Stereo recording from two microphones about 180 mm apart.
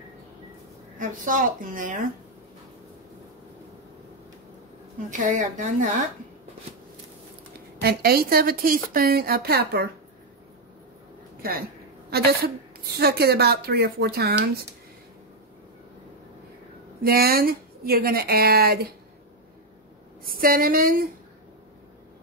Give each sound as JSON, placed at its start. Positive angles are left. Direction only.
{"t": 0.9, "sound": "a woman's voice", "side_deg": -45}
{"t": 5.1, "sound": "a woman's voice", "side_deg": -45}
{"t": 7.5, "sound": "speech", "side_deg": -60}
{"t": 11.4, "sound": "speech", "side_deg": -55}
{"t": 17.0, "sound": "speech", "side_deg": -55}
{"t": 20.2, "sound": "a woman's voice", "side_deg": -55}